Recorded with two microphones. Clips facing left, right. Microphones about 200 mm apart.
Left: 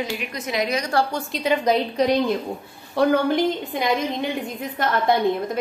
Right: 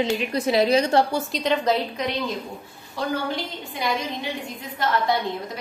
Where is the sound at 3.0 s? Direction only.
60° left (ahead or behind).